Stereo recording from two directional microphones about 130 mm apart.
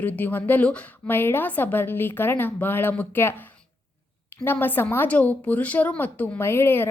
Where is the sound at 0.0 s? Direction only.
15° left (ahead or behind).